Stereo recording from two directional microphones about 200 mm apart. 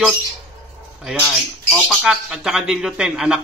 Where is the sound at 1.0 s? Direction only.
Centre (ahead or behind).